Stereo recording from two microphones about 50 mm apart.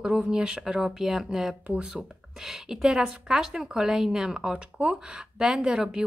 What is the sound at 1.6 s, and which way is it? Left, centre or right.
Speech, right.